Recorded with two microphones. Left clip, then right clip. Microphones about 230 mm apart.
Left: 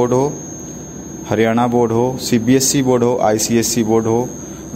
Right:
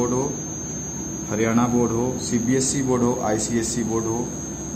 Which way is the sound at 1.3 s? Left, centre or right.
Left.